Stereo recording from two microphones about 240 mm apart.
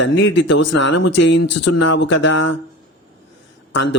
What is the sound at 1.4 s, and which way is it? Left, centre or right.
Speech, left.